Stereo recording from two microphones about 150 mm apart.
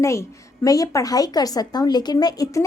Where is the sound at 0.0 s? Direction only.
20° left (ahead or behind).